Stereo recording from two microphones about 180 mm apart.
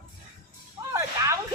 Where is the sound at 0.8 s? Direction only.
25° right (ahead or behind).